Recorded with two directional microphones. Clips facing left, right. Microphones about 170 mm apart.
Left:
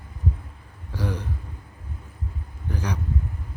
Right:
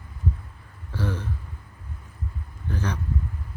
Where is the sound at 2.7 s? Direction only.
15° left (ahead or behind).